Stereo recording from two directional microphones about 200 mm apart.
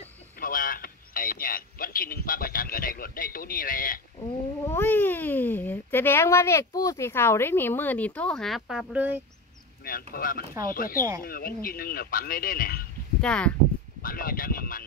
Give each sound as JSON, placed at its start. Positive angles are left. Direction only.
{"t": 0.4, "sound": "a sound", "side_deg": 45}
{"t": 4.6, "sound": "a child's voice", "side_deg": 10}
{"t": 10.1, "sound": "a man's voice", "side_deg": 45}
{"t": 13.2, "sound": "speech", "side_deg": 5}
{"t": 14.0, "sound": "speech", "side_deg": 45}